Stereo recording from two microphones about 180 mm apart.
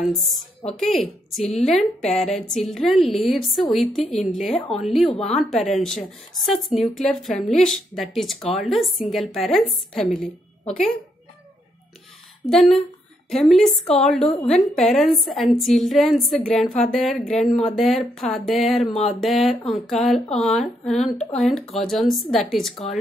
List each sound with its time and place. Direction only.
0.0 s a woman's voice: centre (ahead or behind)
12.4 s a woman's voice: centre (ahead or behind)
18.8 s a sound: 35° left (ahead or behind)
19.2 s a woman's voice: centre (ahead or behind)